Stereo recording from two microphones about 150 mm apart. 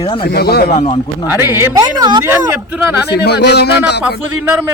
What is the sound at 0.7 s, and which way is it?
Speech, 50° left (ahead or behind).